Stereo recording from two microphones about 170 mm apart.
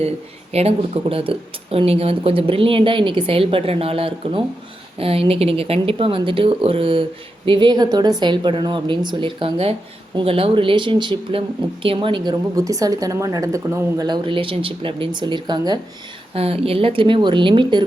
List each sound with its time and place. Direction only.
0.5 s speech: 35° right (ahead or behind)
16.3 s speech: 35° right (ahead or behind)